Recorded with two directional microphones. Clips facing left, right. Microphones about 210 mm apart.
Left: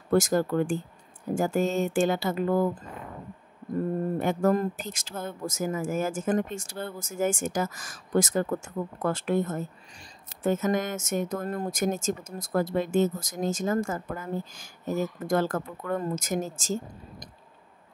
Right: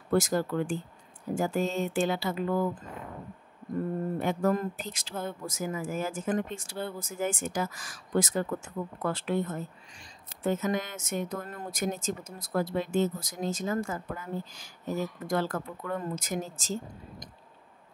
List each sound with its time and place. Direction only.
0.1 s speech: 45° left (ahead or behind)
4.2 s speech: 45° left (ahead or behind)